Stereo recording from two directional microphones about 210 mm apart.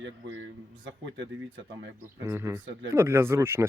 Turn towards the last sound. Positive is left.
turn(degrees=-10)  # may be behind; listen again after turning